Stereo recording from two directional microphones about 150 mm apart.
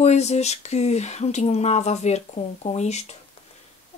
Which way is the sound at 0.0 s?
45° left (ahead or behind).